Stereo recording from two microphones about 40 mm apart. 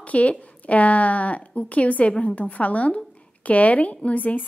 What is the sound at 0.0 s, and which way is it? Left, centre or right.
A woman's voice, left.